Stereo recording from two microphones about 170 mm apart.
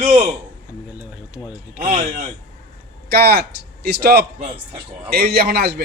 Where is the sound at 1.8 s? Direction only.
40° right (ahead or behind).